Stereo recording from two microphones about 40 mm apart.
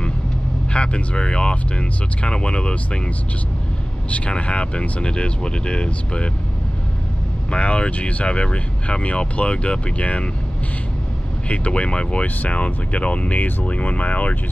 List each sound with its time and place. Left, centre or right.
0.7 s speech: left
4.1 s speech: left
7.5 s speech: left
11.4 s speech: left